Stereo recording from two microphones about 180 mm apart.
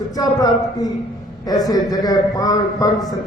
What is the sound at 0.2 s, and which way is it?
A man's voice, 20° left (ahead or behind).